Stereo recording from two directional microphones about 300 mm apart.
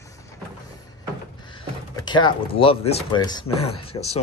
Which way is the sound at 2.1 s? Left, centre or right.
Centre.